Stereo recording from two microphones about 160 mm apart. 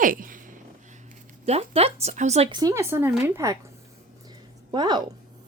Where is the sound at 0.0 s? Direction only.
60° right (ahead or behind).